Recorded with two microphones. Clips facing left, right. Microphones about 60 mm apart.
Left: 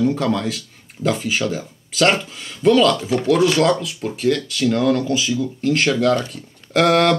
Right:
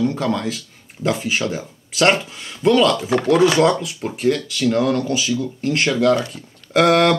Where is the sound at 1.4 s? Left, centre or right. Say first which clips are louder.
Left 1 dB; right.